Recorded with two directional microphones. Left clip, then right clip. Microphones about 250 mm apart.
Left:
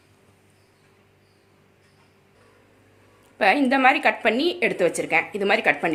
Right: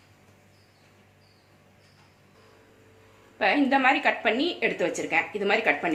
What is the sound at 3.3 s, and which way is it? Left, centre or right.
A woman's voice, left.